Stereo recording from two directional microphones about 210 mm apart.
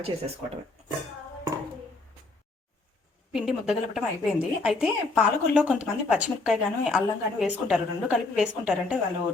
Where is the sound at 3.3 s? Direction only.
Centre (ahead or behind).